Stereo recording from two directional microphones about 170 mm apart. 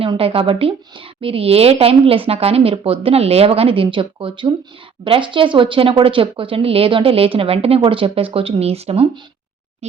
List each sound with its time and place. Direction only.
0.0 s a woman's voice: 30° right (ahead or behind)